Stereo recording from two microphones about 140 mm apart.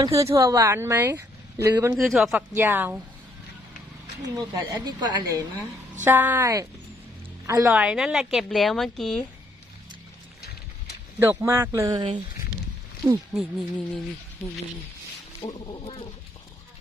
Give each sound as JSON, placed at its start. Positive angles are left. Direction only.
{"t": 0.0, "sound": "a woman's voice", "side_deg": -20}
{"t": 2.0, "sound": "a woman's voice", "side_deg": 0}
{"t": 2.6, "sound": "speech", "side_deg": -15}
{"t": 4.4, "sound": "a woman's voice", "side_deg": -30}
{"t": 6.1, "sound": "speech", "side_deg": -15}
{"t": 7.7, "sound": "a woman's voice", "side_deg": -5}
{"t": 11.2, "sound": "a woman's voice", "side_deg": -20}
{"t": 13.3, "sound": "a woman's voice", "side_deg": 5}
{"t": 15.4, "sound": "speech", "side_deg": 40}